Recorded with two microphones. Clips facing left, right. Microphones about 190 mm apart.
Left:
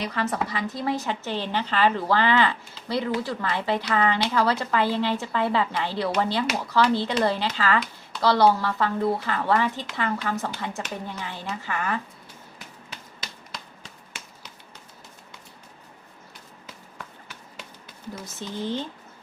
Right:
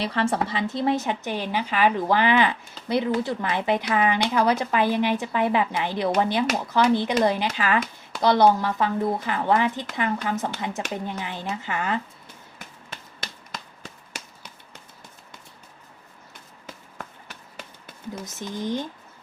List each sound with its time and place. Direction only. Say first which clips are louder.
0.0 s speech: right 3 dB; 30° right (ahead or behind)
13.1 s a sound: right 3 dB; 50° right (ahead or behind)
18.3 s speech: right 1 dB; 15° right (ahead or behind)